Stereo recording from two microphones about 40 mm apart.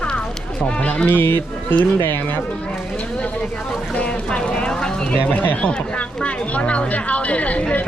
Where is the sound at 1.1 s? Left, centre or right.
Left.